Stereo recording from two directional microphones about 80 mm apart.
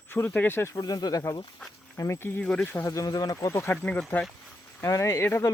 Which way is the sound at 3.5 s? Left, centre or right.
Left.